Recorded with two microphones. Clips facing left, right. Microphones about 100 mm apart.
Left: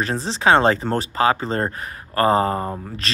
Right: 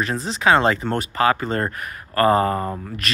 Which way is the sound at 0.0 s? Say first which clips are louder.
Left 1 dB; 30° left (ahead or behind).